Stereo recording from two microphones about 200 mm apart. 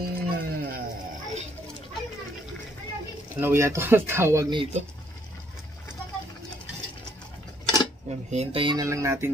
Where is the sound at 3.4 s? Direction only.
15° right (ahead or behind).